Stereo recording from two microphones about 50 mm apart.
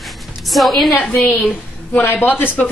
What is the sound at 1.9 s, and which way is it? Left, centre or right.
Speech, left.